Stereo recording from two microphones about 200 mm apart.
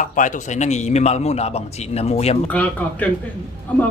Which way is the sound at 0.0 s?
40° left (ahead or behind).